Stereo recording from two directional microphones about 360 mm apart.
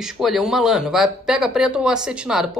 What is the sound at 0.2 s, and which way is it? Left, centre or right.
Speech, centre.